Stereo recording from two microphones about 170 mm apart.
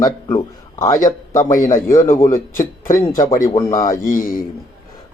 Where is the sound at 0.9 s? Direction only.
50° left (ahead or behind).